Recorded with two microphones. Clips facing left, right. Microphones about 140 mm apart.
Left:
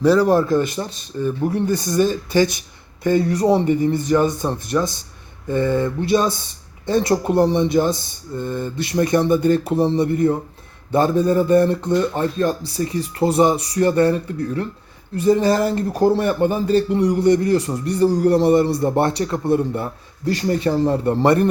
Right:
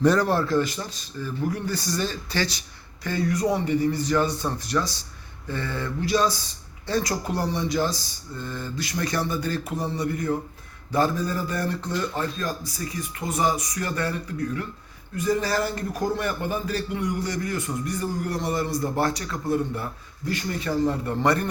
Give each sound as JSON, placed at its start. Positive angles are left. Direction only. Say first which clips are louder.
{"t": 0.0, "sound": "a man's voice", "louder": "left 5 dB", "side_deg": 10}
{"t": 0.3, "sound": "a man's voice", "louder": "left 6 dB", "side_deg": 20}